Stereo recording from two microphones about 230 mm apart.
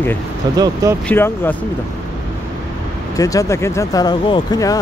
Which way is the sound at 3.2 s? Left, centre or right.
Centre.